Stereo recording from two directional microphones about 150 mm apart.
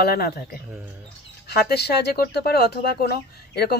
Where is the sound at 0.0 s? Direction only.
90° left.